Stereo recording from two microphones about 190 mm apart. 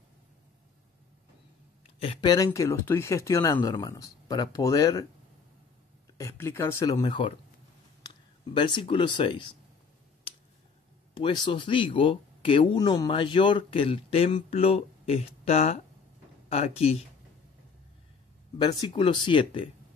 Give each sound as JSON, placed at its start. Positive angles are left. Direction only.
{"t": 2.0, "sound": "speech", "side_deg": 25}
{"t": 6.1, "sound": "speech", "side_deg": 15}
{"t": 8.5, "sound": "speech", "side_deg": 25}
{"t": 11.1, "sound": "speech", "side_deg": 25}
{"t": 18.9, "sound": "speech", "side_deg": 25}